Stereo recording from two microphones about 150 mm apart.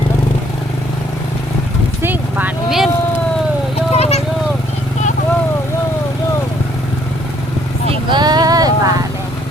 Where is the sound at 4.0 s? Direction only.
45° left (ahead or behind).